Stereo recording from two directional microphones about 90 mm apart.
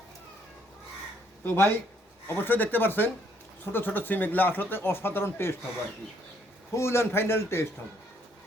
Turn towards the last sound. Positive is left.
turn(degrees=30)  # may be behind; listen again after turning